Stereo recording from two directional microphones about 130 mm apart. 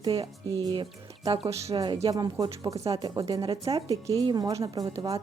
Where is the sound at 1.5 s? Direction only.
50° right (ahead or behind).